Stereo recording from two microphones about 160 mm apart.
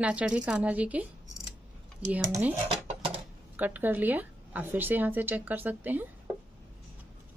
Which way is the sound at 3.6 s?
10° right (ahead or behind).